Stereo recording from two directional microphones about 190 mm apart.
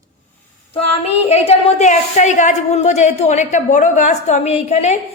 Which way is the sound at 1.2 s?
35° left (ahead or behind).